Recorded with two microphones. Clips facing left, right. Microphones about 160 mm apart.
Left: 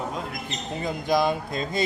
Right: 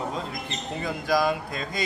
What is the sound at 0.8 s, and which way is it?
Speech, 20° left (ahead or behind).